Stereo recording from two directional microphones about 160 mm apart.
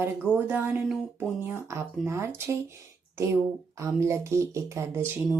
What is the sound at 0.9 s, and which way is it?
Speech, 5° left (ahead or behind).